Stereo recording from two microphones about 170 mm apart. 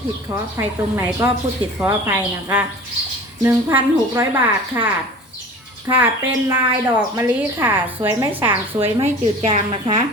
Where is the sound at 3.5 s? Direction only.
15° right (ahead or behind).